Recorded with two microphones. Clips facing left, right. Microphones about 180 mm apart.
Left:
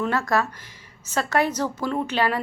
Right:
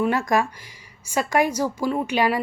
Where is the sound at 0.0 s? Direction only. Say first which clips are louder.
Right 2 dB; 15° right (ahead or behind).